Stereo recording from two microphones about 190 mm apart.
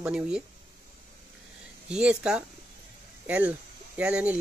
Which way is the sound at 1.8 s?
5° right (ahead or behind).